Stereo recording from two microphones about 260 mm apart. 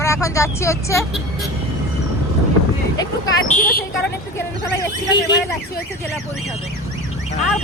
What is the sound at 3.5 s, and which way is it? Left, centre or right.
Speech, left.